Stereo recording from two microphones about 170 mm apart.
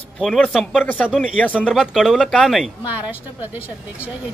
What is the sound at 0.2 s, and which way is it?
A woman's voice, 5° left (ahead or behind).